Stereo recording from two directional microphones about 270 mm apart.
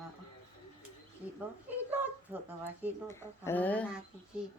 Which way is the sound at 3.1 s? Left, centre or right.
Centre.